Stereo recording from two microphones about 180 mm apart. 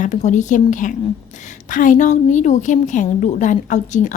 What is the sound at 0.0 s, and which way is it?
A woman's voice, 40° left (ahead or behind).